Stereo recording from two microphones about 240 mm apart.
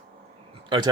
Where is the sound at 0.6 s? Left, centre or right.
Centre.